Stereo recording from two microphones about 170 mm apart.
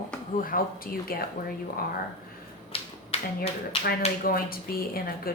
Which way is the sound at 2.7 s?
35° left (ahead or behind).